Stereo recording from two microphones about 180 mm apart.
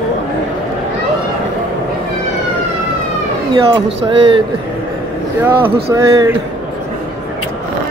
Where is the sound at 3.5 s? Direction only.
25° right (ahead or behind).